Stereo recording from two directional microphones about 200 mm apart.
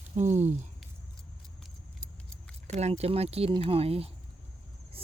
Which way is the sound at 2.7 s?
35° right (ahead or behind).